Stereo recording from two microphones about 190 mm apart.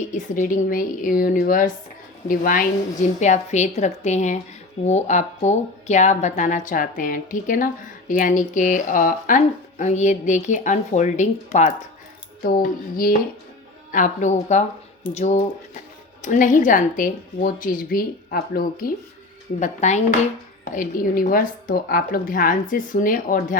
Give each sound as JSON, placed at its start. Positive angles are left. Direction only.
{"t": 0.1, "sound": "a woman's voice", "side_deg": 40}
{"t": 13.9, "sound": "a woman's voice", "side_deg": 40}
{"t": 19.5, "sound": "a woman's voice", "side_deg": 40}